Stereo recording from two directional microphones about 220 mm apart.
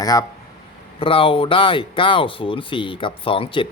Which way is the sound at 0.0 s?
15° left (ahead or behind).